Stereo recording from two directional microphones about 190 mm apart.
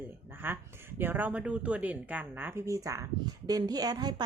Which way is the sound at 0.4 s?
10° right (ahead or behind).